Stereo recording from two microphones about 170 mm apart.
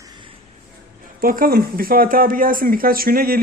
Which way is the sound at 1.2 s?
60° right (ahead or behind).